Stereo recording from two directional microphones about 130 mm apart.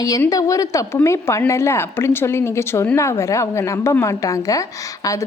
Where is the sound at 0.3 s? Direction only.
25° left (ahead or behind).